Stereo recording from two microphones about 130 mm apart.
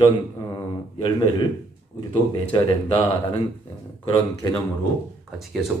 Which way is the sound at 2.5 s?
35° left (ahead or behind).